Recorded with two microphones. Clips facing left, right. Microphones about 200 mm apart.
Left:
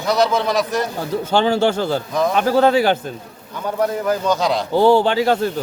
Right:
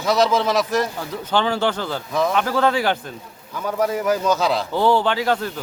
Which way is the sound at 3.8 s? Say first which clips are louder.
Left 1 dB; 10° right (ahead or behind).